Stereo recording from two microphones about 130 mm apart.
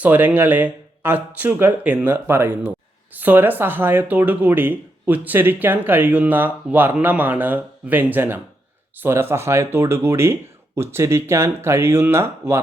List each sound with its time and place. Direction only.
0.0 s speech: 10° right (ahead or behind)